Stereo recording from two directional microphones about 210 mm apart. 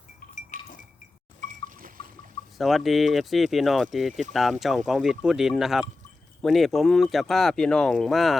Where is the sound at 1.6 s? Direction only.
40° right (ahead or behind).